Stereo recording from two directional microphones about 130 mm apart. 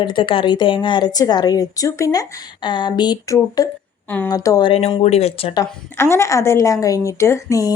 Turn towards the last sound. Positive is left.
turn(degrees=25)  # may be behind; listen again after turning